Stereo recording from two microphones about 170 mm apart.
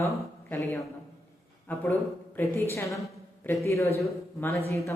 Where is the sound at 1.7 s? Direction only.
10° left (ahead or behind).